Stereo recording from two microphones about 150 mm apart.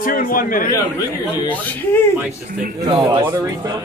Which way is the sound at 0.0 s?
70° left (ahead or behind).